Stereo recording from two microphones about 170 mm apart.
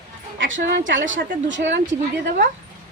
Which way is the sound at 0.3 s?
90° right.